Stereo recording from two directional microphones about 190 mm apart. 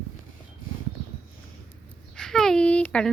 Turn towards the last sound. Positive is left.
turn(degrees=5)  # may be behind; listen again after turning